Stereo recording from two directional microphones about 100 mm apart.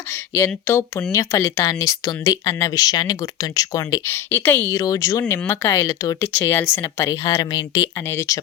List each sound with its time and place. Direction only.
0.3 s speech: 25° left (ahead or behind)
4.1 s speech: 20° left (ahead or behind)
4.7 s speech: 35° left (ahead or behind)
5.8 s speech: 40° left (ahead or behind)
6.1 s speech: 25° left (ahead or behind)